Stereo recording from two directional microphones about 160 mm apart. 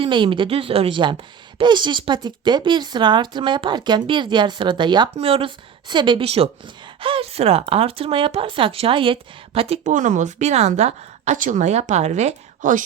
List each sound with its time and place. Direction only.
0.0 s speech: 30° right (ahead or behind)
9.9 s a woman's voice: 50° right (ahead or behind)